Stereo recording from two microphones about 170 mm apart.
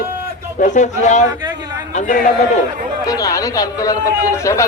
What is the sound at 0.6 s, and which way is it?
Speech, 45° left (ahead or behind).